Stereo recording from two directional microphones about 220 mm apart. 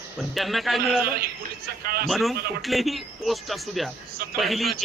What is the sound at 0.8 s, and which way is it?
A man's voice, 45° right (ahead or behind).